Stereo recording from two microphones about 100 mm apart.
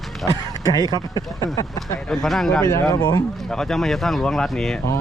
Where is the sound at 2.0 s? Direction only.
5° left (ahead or behind).